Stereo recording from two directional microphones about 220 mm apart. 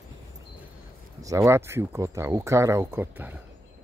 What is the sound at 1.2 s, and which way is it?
Speech, 15° right (ahead or behind).